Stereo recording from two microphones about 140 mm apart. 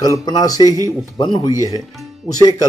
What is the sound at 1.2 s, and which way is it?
Speech, 35° left (ahead or behind).